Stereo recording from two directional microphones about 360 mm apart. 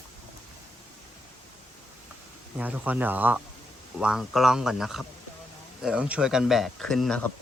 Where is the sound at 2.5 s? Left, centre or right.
Centre.